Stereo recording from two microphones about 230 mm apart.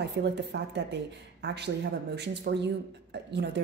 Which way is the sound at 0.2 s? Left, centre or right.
Right.